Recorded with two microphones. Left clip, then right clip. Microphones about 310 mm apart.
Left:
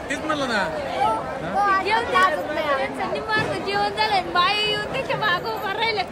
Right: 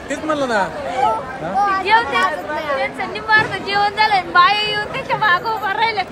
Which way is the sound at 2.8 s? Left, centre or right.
Right.